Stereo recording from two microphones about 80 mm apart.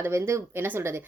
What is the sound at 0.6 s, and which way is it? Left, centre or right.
Speech, right.